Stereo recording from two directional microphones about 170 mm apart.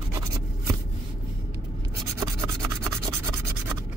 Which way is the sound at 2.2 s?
15° right (ahead or behind).